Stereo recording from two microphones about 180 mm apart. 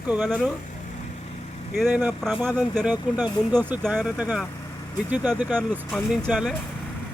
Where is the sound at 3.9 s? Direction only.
10° right (ahead or behind).